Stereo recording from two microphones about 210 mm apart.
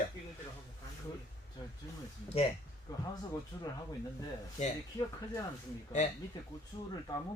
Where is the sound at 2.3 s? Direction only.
30° left (ahead or behind).